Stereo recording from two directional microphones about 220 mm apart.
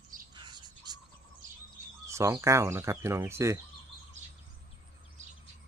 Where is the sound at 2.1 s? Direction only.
15° right (ahead or behind).